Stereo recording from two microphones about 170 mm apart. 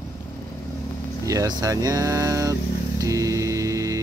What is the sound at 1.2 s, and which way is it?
Speech, 20° right (ahead or behind).